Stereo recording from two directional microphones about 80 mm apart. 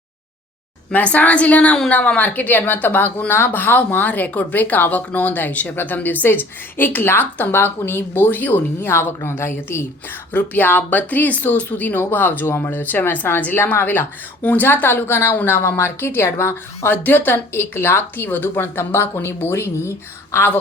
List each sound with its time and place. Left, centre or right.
0.9 s speech: centre